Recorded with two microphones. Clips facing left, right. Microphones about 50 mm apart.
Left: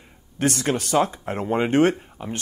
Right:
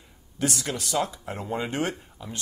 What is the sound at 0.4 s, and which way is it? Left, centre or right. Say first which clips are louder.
Speech: left 6 dB; left.